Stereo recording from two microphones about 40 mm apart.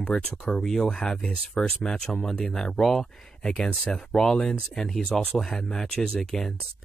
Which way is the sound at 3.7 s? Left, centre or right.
Left.